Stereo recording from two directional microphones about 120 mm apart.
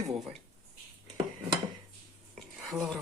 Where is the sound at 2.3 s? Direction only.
Centre (ahead or behind).